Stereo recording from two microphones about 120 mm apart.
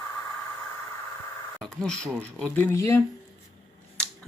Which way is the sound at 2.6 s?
25° left (ahead or behind).